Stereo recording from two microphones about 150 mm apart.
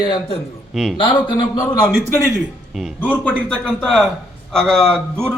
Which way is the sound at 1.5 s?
25° left (ahead or behind).